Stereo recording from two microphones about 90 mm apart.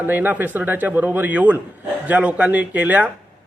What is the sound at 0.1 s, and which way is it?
A man's voice, 20° right (ahead or behind).